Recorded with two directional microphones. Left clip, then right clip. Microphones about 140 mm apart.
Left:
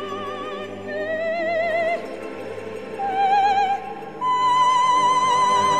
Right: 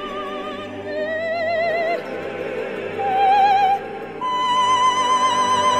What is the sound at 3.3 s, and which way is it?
Music, 50° right (ahead or behind).